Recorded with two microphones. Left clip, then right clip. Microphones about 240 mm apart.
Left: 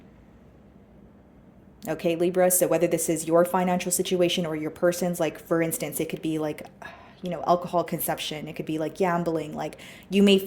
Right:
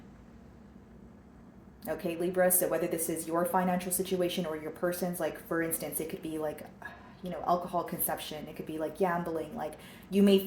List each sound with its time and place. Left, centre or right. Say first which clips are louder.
1.8 s speech: left 8 dB; left